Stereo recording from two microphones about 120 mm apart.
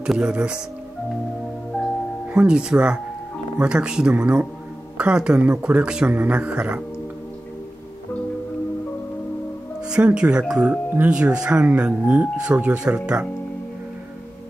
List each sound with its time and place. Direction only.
0.0 s speech: 5° right (ahead or behind)
2.2 s speech: 5° right (ahead or behind)
9.8 s speech: 10° right (ahead or behind)